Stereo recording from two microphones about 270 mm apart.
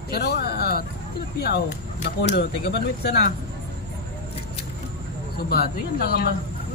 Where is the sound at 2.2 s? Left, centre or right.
Left.